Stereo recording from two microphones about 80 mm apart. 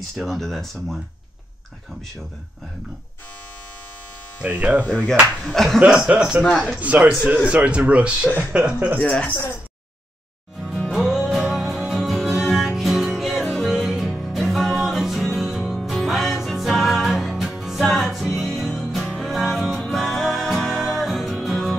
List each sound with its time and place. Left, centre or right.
0.2 s speech: centre
4.4 s speech: centre
4.8 s speech: centre
5.4 s speech: centre
5.8 s speech: centre
9.0 s speech: centre
10.6 s music: centre
10.9 s music: centre